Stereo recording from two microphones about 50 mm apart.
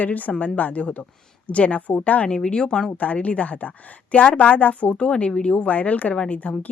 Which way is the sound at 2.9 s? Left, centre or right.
Left.